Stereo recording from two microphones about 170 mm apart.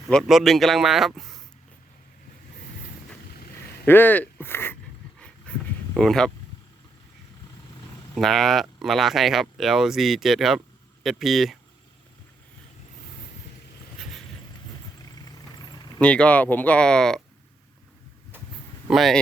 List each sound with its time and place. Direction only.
0.1 s speech: centre (ahead or behind)
3.3 s vehicle: 65° left (ahead or behind)
3.8 s speech: 10° left (ahead or behind)
5.2 s dog: 5° left (ahead or behind)
8.1 s speech: centre (ahead or behind)
15.2 s vehicle: 25° left (ahead or behind)
16.0 s speech: 5° left (ahead or behind)
18.9 s speech: centre (ahead or behind)